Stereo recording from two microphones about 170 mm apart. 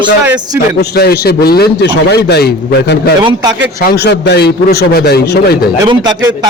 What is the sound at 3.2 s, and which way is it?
Speech, 25° right (ahead or behind).